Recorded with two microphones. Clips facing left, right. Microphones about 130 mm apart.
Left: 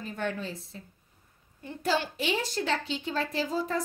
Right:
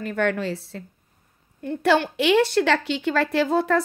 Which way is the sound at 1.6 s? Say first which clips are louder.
Right 9 dB; 65° right (ahead or behind).